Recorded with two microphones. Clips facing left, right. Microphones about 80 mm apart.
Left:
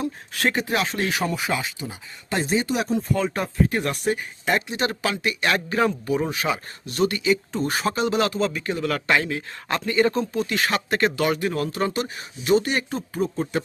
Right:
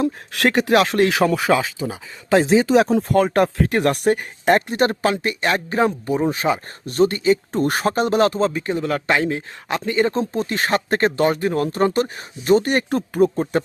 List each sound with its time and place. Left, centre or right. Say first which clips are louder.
0.0 s speech: right 5 dB; right
6.3 s speech: right 5 dB; right
7.5 s speech: right 5 dB; right
10.2 s speech: right 2 dB; right